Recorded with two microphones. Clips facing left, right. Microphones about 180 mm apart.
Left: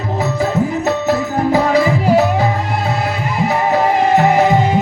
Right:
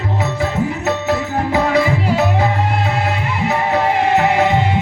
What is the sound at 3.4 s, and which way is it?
Music, 40° left (ahead or behind).